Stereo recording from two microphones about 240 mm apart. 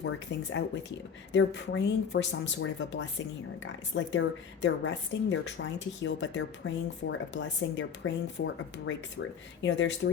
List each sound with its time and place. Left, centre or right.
0.0 s speech: left